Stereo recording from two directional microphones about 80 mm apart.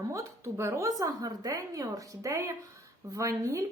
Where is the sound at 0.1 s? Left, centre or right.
Right.